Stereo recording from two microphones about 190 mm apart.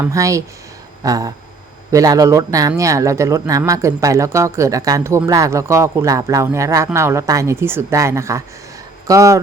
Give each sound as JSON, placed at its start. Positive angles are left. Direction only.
{"t": 0.0, "sound": "speech", "side_deg": -15}
{"t": 1.0, "sound": "a sound", "side_deg": -20}
{"t": 1.9, "sound": "speech", "side_deg": -20}